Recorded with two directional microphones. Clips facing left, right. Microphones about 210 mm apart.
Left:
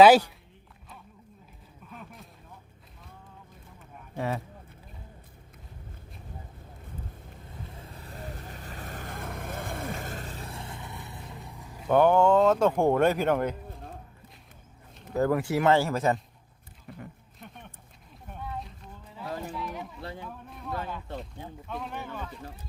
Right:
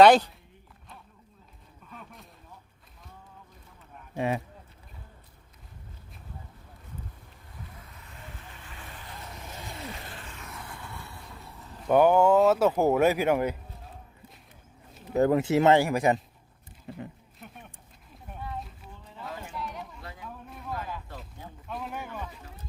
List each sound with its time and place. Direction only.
0.0 s speech: 5° left (ahead or behind)
1.9 s a sound: 5° left (ahead or behind)
4.1 s speech: 15° right (ahead or behind)
7.8 s vehicle: 30° left (ahead or behind); by 11.9 s 10° left (ahead or behind)
11.9 s speech: 10° right (ahead or behind)
15.1 s speech: 20° right (ahead or behind)
16.9 s speech: 25° right (ahead or behind)
17.4 s a sound: 5° right (ahead or behind)
19.5 s chatter: centre (ahead or behind)
20.0 s a sound: 30° left (ahead or behind)
20.5 s a sound: centre (ahead or behind)
21.7 s speech: centre (ahead or behind)